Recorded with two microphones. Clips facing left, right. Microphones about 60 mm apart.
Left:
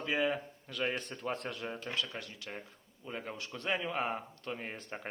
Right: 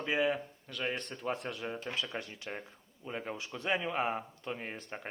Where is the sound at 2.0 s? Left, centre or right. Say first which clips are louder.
Right 1 dB; right.